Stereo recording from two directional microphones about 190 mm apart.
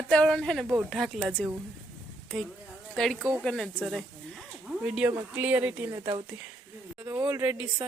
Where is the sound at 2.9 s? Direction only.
Centre (ahead or behind).